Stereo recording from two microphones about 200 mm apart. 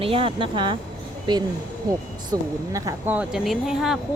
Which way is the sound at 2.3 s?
20° right (ahead or behind).